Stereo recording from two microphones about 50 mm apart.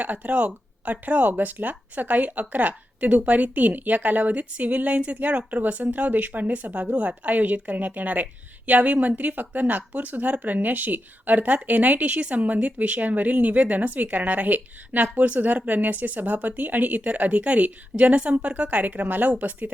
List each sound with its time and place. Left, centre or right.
0.0 s a woman's voice: right